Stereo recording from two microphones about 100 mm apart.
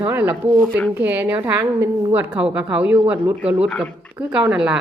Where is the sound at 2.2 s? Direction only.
10° right (ahead or behind).